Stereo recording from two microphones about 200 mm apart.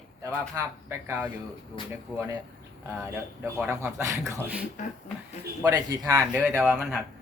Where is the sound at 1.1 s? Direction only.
10° right (ahead or behind).